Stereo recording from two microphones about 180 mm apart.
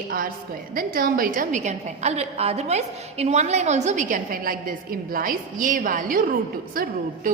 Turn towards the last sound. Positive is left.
turn(degrees=-55)  # may be behind; listen again after turning